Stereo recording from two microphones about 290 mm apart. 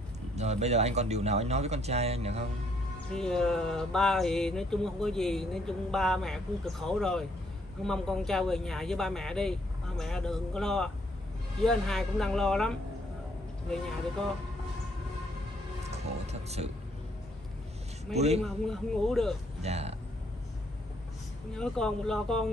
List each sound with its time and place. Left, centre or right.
0.4 s speech: right
3.1 s speech: centre
15.9 s a sound: right
18.1 s speech: right
18.4 s speech: centre
19.6 s speech: right
21.5 s speech: centre